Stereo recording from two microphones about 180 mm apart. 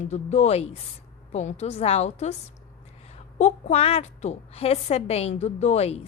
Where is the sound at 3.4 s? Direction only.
40° left (ahead or behind).